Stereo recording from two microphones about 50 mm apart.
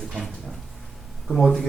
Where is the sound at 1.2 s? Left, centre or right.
Centre.